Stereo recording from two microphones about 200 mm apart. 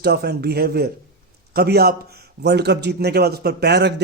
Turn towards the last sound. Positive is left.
turn(degrees=-55)  # may be behind; listen again after turning